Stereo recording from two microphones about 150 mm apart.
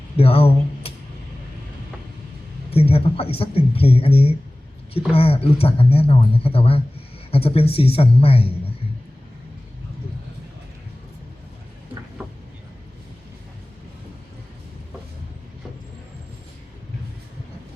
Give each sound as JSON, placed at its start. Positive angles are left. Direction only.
{"t": 0.2, "sound": "speech", "side_deg": 40}
{"t": 2.6, "sound": "speech", "side_deg": 40}